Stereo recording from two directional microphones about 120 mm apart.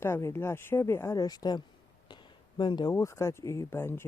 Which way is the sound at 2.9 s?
25° left (ahead or behind).